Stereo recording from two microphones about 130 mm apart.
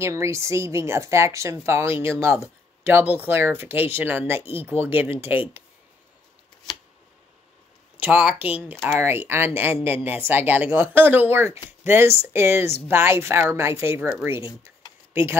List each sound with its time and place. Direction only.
0.0 s speech: 20° right (ahead or behind)
8.0 s speech: 10° right (ahead or behind)